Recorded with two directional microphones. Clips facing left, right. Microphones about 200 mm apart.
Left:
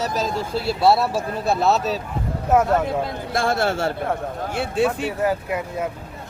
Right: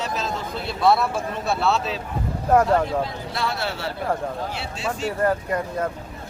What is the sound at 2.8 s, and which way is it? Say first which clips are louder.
Speech: left 1 dB; 50° left (ahead or behind).